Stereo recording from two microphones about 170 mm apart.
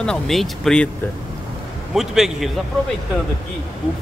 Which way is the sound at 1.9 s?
Centre (ahead or behind).